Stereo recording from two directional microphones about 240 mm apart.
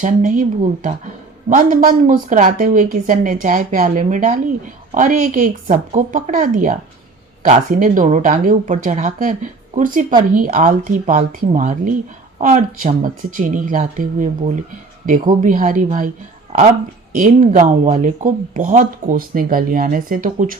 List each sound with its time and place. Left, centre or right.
0.0 s speech: right